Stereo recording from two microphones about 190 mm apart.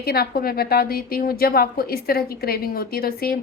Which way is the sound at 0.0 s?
55° left (ahead or behind).